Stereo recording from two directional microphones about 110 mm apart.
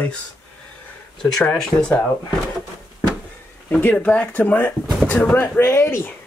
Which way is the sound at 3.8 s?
15° left (ahead or behind).